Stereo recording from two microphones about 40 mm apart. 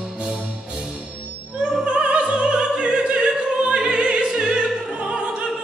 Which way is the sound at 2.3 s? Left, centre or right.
Right.